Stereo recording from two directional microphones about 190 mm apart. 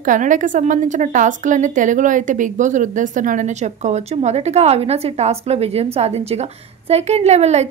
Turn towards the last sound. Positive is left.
turn(degrees=-35)  # may be behind; listen again after turning